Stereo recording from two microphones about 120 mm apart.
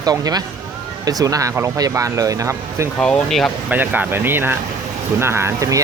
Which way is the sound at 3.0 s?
5° left (ahead or behind).